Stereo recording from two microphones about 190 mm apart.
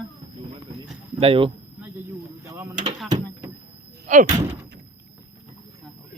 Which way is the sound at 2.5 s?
15° right (ahead or behind).